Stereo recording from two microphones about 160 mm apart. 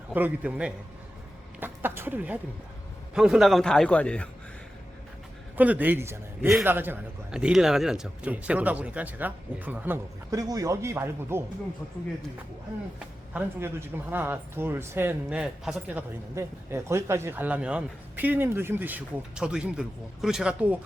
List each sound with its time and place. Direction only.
0.1 s speech: 10° right (ahead or behind)
1.5 s a sound: 10° right (ahead or behind)
3.2 s a man's voice: 5° right (ahead or behind)
5.5 s speech: 10° right (ahead or behind)
10.3 s speech: 20° right (ahead or behind)
13.3 s speech: 15° right (ahead or behind)